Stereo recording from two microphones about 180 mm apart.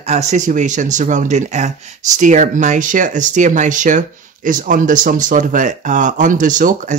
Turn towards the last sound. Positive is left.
turn(degrees=-45)  # may be behind; listen again after turning